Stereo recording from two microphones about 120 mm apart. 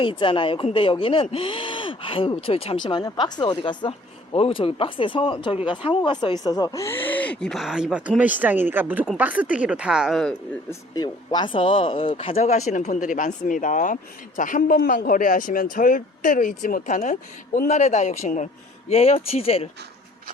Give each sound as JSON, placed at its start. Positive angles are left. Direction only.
{"t": 0.0, "sound": "speech", "side_deg": 45}
{"t": 2.8, "sound": "speech", "side_deg": 35}
{"t": 7.6, "sound": "speech", "side_deg": -5}
{"t": 10.7, "sound": "speech", "side_deg": 35}
{"t": 15.7, "sound": "speech", "side_deg": 90}
{"t": 18.9, "sound": "speech", "side_deg": 55}